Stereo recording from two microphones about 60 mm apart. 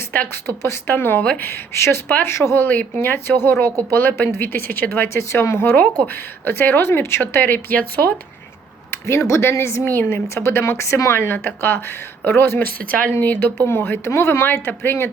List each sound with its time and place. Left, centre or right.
0.4 s speech: left
2.6 s speech: left
3.7 s speech: right
3.9 s speech: left
8.9 s speech: left
9.9 s speech: left
10.2 s speech: left